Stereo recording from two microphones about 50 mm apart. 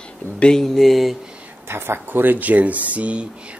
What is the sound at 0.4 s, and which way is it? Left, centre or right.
Speech, centre.